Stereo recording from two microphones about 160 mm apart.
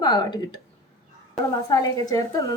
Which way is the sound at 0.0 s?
25° left (ahead or behind).